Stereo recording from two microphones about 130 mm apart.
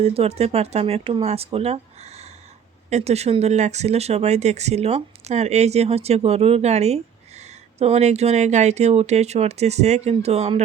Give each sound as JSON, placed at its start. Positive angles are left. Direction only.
{"t": 0.0, "sound": "speech", "side_deg": -50}
{"t": 1.5, "sound": "a sound", "side_deg": -55}
{"t": 2.9, "sound": "speech", "side_deg": -55}